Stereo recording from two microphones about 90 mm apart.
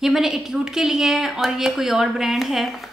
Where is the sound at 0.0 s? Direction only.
5° right (ahead or behind).